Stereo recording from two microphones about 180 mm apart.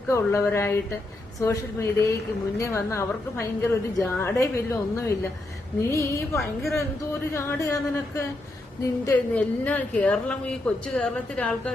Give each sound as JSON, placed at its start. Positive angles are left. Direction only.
{"t": 0.1, "sound": "a woman's voice", "side_deg": 15}
{"t": 6.3, "sound": "a woman's voice", "side_deg": 0}
{"t": 6.7, "sound": "a woman's voice", "side_deg": 15}